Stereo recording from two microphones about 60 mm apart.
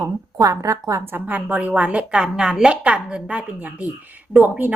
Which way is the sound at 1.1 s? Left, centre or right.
Right.